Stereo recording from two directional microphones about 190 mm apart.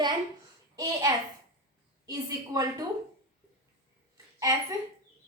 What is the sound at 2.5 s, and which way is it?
Speech, 20° right (ahead or behind).